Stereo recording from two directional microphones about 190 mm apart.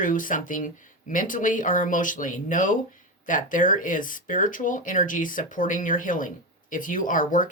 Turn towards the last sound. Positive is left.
turn(degrees=45)  # may be behind; listen again after turning